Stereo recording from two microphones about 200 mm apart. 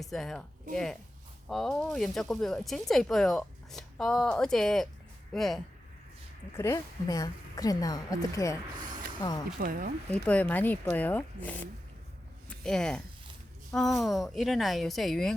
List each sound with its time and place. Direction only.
0.0 s speech: centre (ahead or behind)
6.6 s a woman's voice: 15° left (ahead or behind)
9.6 s speech: 45° right (ahead or behind)
10.1 s a woman's voice: 5° left (ahead or behind)